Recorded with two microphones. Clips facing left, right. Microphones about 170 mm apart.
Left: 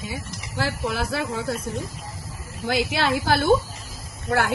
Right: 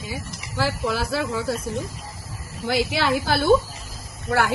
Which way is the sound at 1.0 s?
55° left (ahead or behind).